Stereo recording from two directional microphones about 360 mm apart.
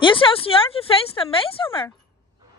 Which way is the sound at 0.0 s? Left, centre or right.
Centre.